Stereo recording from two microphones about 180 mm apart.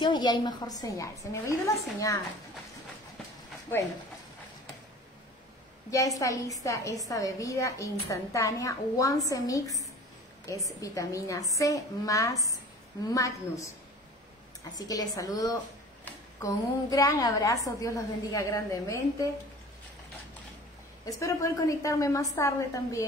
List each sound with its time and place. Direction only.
0.0 s a woman's voice: 25° left (ahead or behind)
5.9 s a woman's voice: 20° left (ahead or behind)
14.8 s a woman's voice: 20° left (ahead or behind)
21.0 s a woman's voice: 20° left (ahead or behind)